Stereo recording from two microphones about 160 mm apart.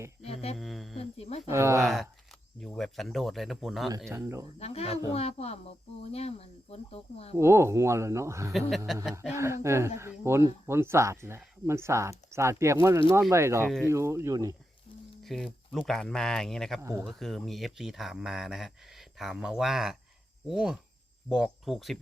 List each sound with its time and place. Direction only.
0.2 s a sound: 40° left (ahead or behind)
0.5 s a sound: centre (ahead or behind)
0.9 s speech: 40° left (ahead or behind)
1.5 s speech: 15° right (ahead or behind)
1.8 s speech: centre (ahead or behind)
4.1 s speech: 15° right (ahead or behind)
4.6 s speech: 40° left (ahead or behind)
7.3 s speech: 15° right (ahead or behind)
8.9 s speech: centre (ahead or behind)
9.3 s speech: 15° right (ahead or behind)
15.2 s a sound: centre (ahead or behind)
15.9 s speech: 5° left (ahead or behind)
16.8 s speech: 15° right (ahead or behind)
17.1 s speech: centre (ahead or behind)